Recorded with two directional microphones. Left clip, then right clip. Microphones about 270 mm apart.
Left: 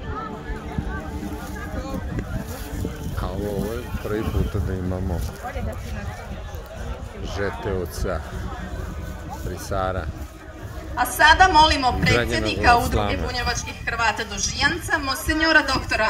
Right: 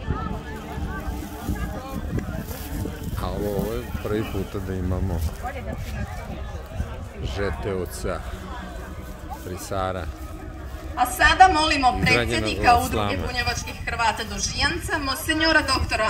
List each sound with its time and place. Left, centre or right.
3.2 s speech: centre
7.3 s speech: centre
9.7 s speech: centre
11.0 s a woman's voice: centre
12.8 s speech: centre
13.4 s a woman's voice: centre